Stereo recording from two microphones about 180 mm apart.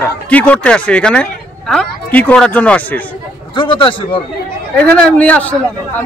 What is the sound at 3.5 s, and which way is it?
Speech, 25° left (ahead or behind).